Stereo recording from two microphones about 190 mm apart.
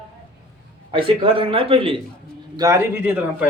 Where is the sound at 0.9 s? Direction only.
30° right (ahead or behind).